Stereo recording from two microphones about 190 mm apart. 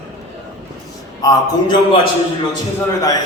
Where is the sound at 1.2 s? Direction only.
25° left (ahead or behind).